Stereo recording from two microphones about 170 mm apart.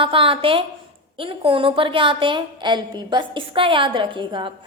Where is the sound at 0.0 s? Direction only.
30° right (ahead or behind).